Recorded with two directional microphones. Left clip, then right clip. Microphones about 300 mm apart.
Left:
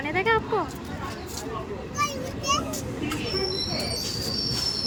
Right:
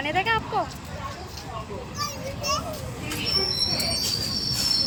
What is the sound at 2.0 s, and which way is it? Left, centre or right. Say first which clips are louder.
Children playing: left 4 dB; left.